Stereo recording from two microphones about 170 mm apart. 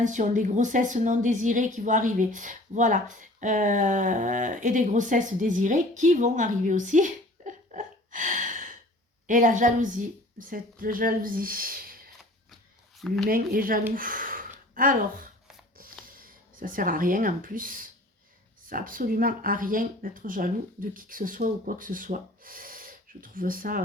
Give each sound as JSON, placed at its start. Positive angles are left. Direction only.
{"t": 0.0, "sound": "a woman's voice", "side_deg": -45}
{"t": 13.0, "sound": "speech", "side_deg": 0}
{"t": 13.2, "sound": "speech", "side_deg": -60}
{"t": 13.9, "sound": "a sound", "side_deg": -55}
{"t": 14.8, "sound": "speech", "side_deg": -55}
{"t": 15.8, "sound": "a sound", "side_deg": -55}
{"t": 18.7, "sound": "speech", "side_deg": -55}